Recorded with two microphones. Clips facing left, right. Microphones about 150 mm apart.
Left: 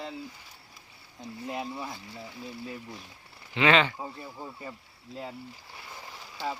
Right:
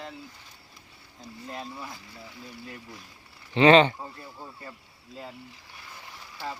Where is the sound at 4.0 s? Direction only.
10° left (ahead or behind).